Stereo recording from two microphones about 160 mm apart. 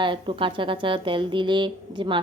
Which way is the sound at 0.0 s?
30° right (ahead or behind).